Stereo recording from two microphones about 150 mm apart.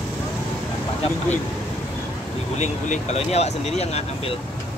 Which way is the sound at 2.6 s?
50° left (ahead or behind).